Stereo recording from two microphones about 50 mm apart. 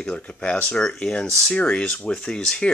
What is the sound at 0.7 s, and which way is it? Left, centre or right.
Speech, centre.